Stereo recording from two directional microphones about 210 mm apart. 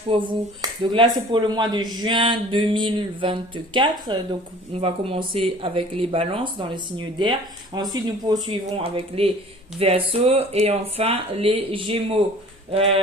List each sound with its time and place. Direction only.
0.1 s speech: 25° right (ahead or behind)